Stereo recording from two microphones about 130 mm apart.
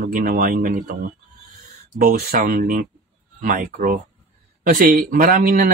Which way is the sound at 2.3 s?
90° right.